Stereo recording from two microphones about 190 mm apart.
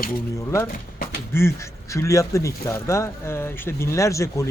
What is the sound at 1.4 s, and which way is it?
Speech, 15° left (ahead or behind).